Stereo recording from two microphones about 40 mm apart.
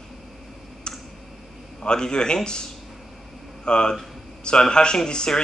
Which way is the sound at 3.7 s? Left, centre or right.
Left.